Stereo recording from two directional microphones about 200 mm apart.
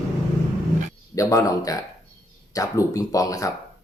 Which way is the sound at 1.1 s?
15° left (ahead or behind).